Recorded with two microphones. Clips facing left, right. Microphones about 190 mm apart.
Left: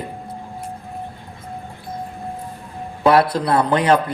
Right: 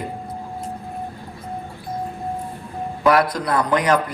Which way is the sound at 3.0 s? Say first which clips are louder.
Left 2 dB; 30° left (ahead or behind).